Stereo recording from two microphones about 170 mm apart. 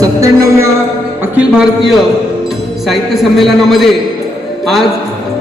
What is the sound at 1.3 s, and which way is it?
A man's voice, 5° right (ahead or behind).